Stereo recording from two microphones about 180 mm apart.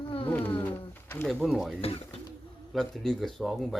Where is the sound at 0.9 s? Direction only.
10° left (ahead or behind).